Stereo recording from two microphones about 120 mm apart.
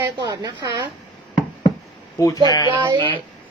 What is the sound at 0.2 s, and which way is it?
Speech, 35° right (ahead or behind).